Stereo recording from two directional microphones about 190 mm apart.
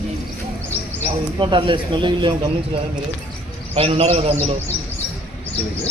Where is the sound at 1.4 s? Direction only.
25° right (ahead or behind).